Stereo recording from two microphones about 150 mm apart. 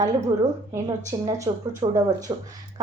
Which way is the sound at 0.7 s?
20° right (ahead or behind).